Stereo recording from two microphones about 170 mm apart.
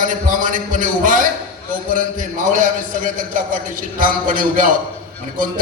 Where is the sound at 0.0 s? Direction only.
50° right (ahead or behind).